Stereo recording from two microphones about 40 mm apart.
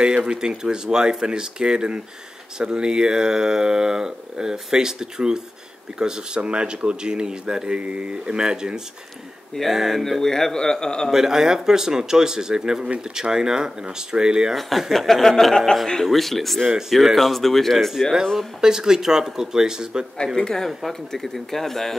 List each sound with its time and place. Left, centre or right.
0.0 s speech: right
8.4 s speech: centre
9.9 s speech: centre
11.1 s speech: centre
14.5 s speech: centre
18.6 s speech: centre
20.3 s speech: centre